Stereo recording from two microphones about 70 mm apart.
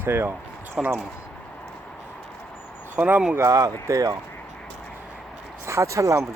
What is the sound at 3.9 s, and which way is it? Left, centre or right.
Speech, right.